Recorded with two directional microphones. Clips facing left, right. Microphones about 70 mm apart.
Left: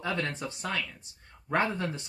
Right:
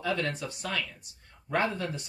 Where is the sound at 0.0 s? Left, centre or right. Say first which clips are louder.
Right 1 dB; left.